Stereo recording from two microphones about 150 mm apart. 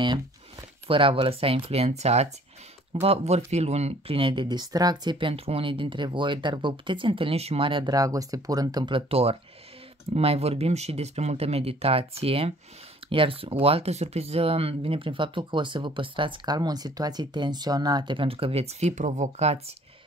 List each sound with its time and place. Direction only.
0.8 s speech: 35° right (ahead or behind)